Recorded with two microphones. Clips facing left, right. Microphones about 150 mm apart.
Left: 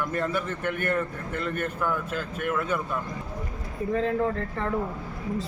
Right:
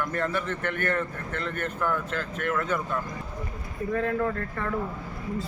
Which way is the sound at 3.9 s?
25° left (ahead or behind).